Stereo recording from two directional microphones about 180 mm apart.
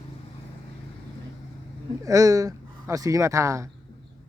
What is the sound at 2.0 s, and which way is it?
Speech, 20° right (ahead or behind).